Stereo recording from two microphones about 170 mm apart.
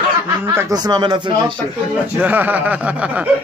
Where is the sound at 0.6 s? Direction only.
20° right (ahead or behind).